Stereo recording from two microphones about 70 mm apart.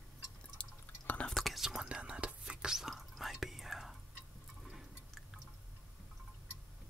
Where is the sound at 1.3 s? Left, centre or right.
Centre.